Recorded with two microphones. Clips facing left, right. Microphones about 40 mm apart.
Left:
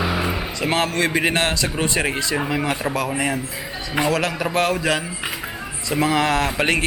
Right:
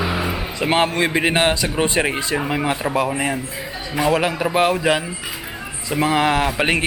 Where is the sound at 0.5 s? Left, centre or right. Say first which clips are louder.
Right 3 dB; centre.